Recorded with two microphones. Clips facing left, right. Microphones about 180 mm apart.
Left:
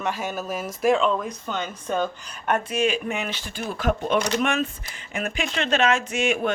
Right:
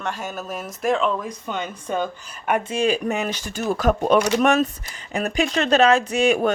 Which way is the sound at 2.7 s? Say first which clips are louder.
Right 3 dB; 35° right (ahead or behind).